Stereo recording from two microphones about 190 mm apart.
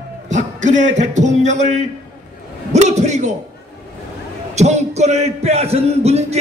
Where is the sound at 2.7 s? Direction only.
35° right (ahead or behind).